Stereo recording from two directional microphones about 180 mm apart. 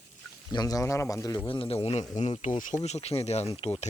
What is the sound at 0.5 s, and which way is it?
Speech, 20° left (ahead or behind).